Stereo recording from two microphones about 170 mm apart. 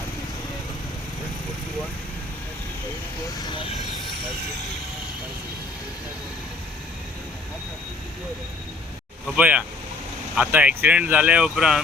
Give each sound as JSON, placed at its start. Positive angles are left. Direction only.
{"t": 3.3, "sound": "speech", "side_deg": 25}
{"t": 9.2, "sound": "speech", "side_deg": -5}